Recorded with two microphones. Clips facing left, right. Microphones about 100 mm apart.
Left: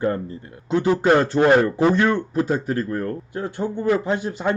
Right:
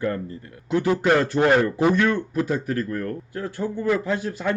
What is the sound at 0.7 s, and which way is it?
Speech, 25° left (ahead or behind).